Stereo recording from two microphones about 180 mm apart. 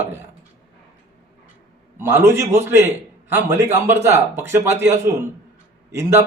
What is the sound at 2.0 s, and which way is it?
A man's voice, 15° right (ahead or behind).